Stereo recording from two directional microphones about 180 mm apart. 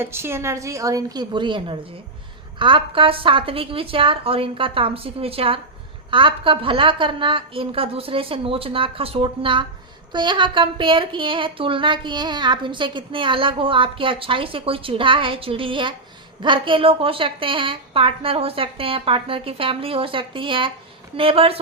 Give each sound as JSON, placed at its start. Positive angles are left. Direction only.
{"t": 0.0, "sound": "a woman's voice", "side_deg": -15}